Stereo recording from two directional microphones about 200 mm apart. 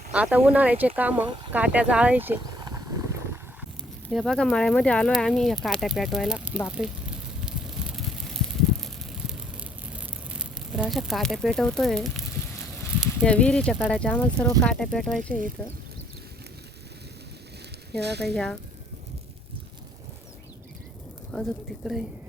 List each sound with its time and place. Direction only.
0.1 s speech: 5° right (ahead or behind)
2.6 s horse: 20° right (ahead or behind)
4.1 s speech: centre (ahead or behind)
6.7 s a sound: 5° right (ahead or behind)
10.7 s speech: centre (ahead or behind)
18.0 s speech: 55° right (ahead or behind)
21.3 s speech: 5° left (ahead or behind)